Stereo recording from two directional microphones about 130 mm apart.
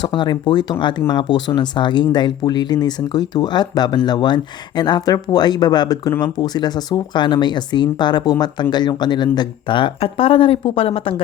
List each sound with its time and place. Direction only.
0.0 s speech: 35° left (ahead or behind)